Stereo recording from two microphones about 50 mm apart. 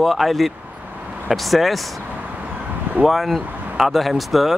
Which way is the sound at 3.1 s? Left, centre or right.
Centre.